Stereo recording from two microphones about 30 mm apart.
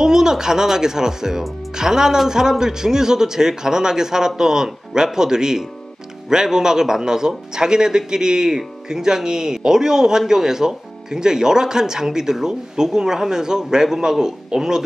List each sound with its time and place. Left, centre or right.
0.0 s speech: right